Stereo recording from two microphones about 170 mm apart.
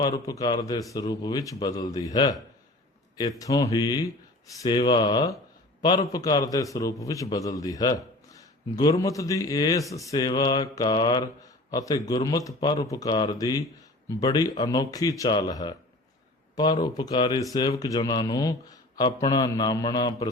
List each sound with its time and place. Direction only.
0.0 s a man's voice: 25° left (ahead or behind)
16.8 s a man's voice: 25° left (ahead or behind)